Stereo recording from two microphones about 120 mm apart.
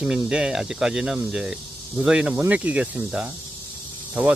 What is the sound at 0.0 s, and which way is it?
Speech, 5° right (ahead or behind).